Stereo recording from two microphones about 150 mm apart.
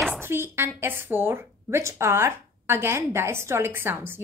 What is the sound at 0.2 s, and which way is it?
A woman's voice, 15° right (ahead or behind).